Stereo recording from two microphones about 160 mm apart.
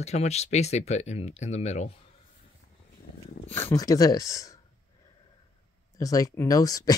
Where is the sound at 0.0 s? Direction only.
45° left (ahead or behind).